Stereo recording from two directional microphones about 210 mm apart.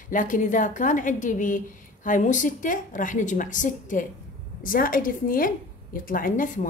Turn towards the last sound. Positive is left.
turn(degrees=40)  # may be behind; listen again after turning